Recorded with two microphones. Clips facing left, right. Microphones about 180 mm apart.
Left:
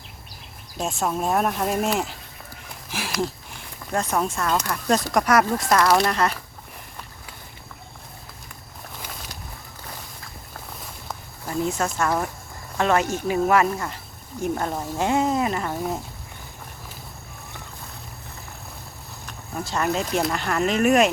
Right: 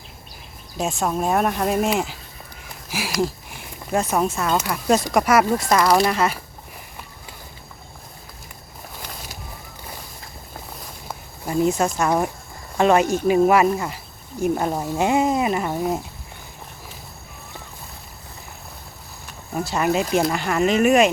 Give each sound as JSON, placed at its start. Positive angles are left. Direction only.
{"t": 0.8, "sound": "speech", "side_deg": 0}
{"t": 3.9, "sound": "speech", "side_deg": -10}
{"t": 11.4, "sound": "speech", "side_deg": -15}
{"t": 19.6, "sound": "speech", "side_deg": -10}